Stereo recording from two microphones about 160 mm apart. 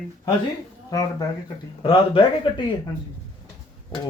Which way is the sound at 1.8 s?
30° left (ahead or behind).